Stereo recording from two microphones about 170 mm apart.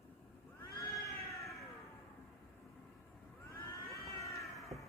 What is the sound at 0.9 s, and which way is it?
Cat, 20° left (ahead or behind).